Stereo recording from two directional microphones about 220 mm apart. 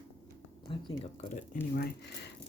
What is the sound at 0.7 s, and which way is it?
Speech, 25° left (ahead or behind).